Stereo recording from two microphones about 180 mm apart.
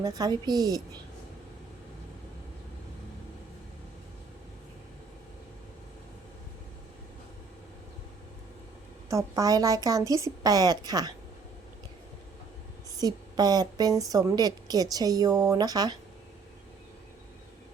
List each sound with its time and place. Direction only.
0.0 s a woman's voice: 20° right (ahead or behind)
9.0 s a woman's voice: 15° right (ahead or behind)
13.0 s a woman's voice: 20° right (ahead or behind)